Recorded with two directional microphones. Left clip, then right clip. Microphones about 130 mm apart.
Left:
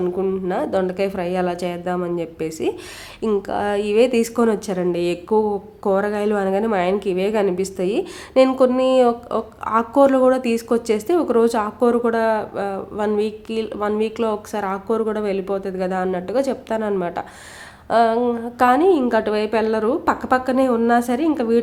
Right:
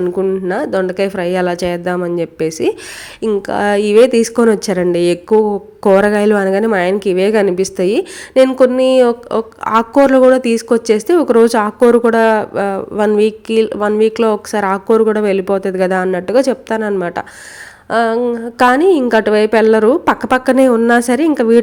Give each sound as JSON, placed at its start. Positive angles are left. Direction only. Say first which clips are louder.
{"t": 0.0, "sound": "speech", "louder": "right 6 dB", "side_deg": -25}
{"t": 17.8, "sound": "a sound", "louder": "right 2 dB", "side_deg": -25}
{"t": 18.3, "sound": "speech", "louder": "right 5 dB", "side_deg": -30}